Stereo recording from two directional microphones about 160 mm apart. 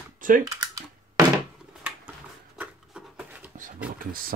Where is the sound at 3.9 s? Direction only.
65° right (ahead or behind).